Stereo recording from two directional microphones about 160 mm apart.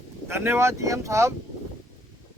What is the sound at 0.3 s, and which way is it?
Speech, 15° right (ahead or behind).